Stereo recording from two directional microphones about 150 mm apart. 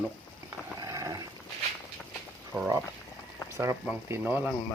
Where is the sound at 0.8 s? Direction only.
25° right (ahead or behind).